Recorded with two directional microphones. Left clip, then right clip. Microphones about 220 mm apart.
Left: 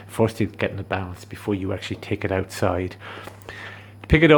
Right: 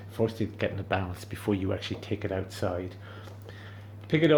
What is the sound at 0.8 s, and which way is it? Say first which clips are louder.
Speech: left 3 dB; 10° left (ahead or behind).